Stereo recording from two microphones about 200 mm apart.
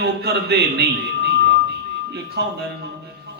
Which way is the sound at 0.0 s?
55° right (ahead or behind).